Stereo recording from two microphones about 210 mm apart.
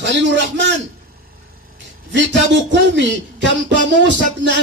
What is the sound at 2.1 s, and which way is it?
A man's voice, 60° right (ahead or behind).